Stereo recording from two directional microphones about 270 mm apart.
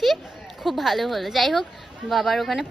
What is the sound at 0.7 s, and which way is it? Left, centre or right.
A woman's voice, centre.